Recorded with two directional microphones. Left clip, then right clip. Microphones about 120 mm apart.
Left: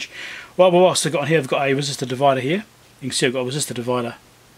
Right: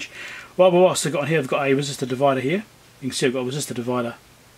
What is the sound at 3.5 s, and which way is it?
Speech, 55° left (ahead or behind).